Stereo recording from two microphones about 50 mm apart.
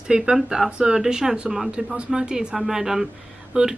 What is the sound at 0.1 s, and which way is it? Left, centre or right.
Speech, centre.